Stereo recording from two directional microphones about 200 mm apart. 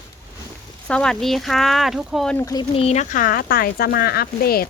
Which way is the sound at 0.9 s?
5° left (ahead or behind).